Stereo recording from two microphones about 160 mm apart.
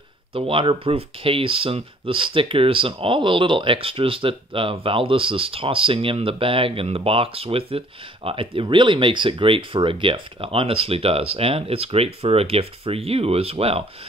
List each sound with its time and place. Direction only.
0.3 s speech: 35° right (ahead or behind)